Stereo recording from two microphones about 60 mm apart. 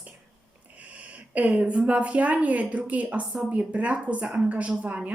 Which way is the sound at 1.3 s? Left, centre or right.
Right.